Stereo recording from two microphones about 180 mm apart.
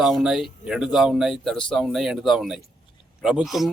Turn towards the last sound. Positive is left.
turn(degrees=0)  # may be behind; listen again after turning